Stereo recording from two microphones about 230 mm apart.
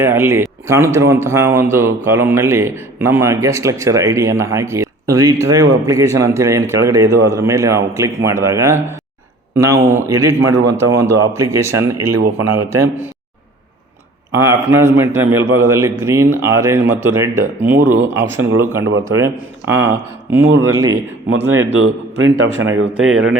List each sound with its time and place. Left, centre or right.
0.0 s speech: centre
14.4 s speech: centre
21.2 s a man's voice: right